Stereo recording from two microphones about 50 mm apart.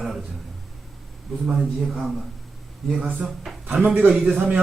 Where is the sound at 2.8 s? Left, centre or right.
Centre.